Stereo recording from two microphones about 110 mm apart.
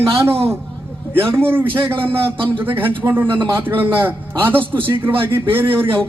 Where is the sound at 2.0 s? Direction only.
50° right (ahead or behind).